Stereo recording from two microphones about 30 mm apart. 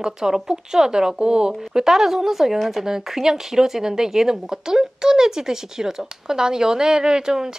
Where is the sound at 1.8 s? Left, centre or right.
Centre.